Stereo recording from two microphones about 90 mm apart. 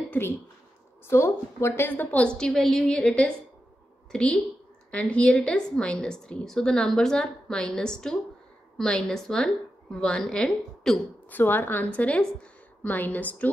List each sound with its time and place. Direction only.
1.0 s a woman's voice: 30° left (ahead or behind); by 11.0 s 5° left (ahead or behind)
11.2 s a woman's voice: 20° left (ahead or behind)